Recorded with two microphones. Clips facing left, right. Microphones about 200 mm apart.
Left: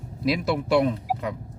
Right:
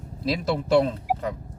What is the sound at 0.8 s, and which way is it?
Speech, 15° left (ahead or behind).